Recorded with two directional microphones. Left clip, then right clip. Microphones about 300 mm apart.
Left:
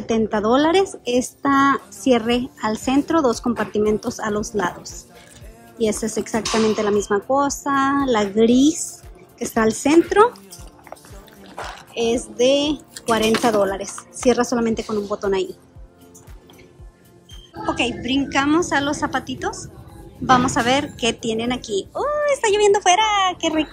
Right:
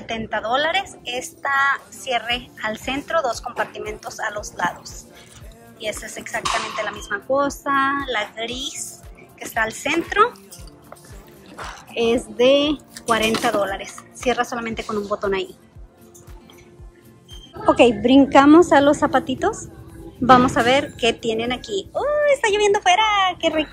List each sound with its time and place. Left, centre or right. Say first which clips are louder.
0.0 s a woman's voice: left 5 dB; centre
6.0 s a woman's voice: left 2 dB; left
11.9 s a woman's voice: right 2 dB; centre
17.6 s a woman's voice: right 8 dB; centre